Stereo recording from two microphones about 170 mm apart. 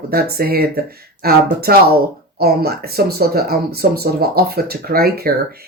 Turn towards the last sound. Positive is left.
turn(degrees=-65)  # may be behind; listen again after turning